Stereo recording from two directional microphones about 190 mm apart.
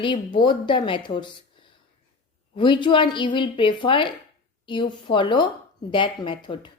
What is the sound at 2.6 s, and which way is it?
A woman's voice, 25° left (ahead or behind).